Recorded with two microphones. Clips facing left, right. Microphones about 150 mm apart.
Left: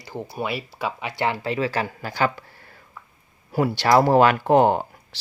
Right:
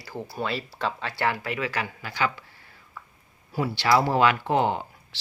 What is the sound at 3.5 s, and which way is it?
Speech, 50° left (ahead or behind).